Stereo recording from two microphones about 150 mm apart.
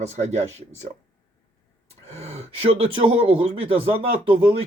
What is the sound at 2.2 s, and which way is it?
Speech, 40° right (ahead or behind).